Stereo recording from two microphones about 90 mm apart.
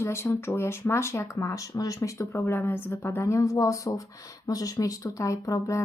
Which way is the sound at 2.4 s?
25° left (ahead or behind).